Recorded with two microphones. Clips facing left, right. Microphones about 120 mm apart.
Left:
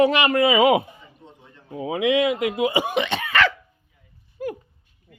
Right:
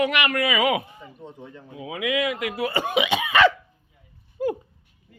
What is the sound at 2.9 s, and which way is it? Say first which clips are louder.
Cough: right 1 dB; 10° right (ahead or behind).